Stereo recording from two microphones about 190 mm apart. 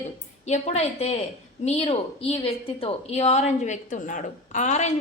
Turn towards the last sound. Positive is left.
turn(degrees=35)  # may be behind; listen again after turning